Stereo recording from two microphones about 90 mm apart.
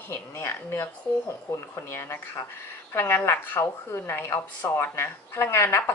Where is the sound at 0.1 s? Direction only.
25° left (ahead or behind).